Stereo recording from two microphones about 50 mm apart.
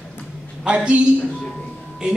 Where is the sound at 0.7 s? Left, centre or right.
Right.